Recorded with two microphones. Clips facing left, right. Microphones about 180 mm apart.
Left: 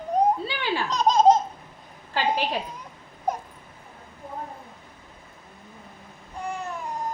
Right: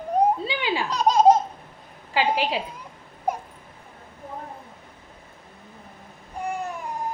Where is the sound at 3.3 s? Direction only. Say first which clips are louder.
Right 1 dB; 10° right (ahead or behind).